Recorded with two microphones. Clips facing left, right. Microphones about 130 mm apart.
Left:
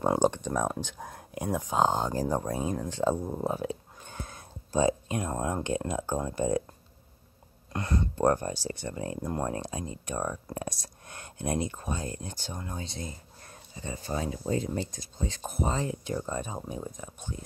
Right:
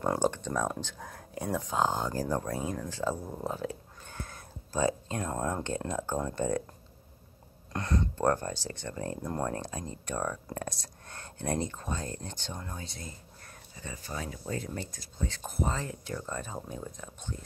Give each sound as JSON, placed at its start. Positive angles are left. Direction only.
{"t": 0.0, "sound": "speech", "side_deg": 20}
{"t": 7.7, "sound": "speech", "side_deg": 5}
{"t": 8.2, "sound": "speech", "side_deg": 15}
{"t": 12.7, "sound": "speech", "side_deg": 20}